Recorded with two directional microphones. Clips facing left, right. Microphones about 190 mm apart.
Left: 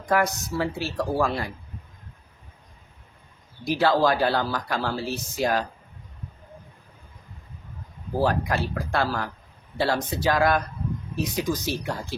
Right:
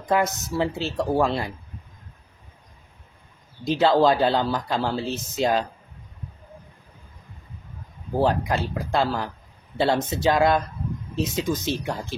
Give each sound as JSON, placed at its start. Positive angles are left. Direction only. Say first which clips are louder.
{"t": 0.0, "sound": "speech", "louder": "right 1 dB", "side_deg": -25}
{"t": 3.6, "sound": "speech", "louder": "right 3 dB", "side_deg": -20}
{"t": 8.2, "sound": "speech", "louder": "right 2 dB", "side_deg": -25}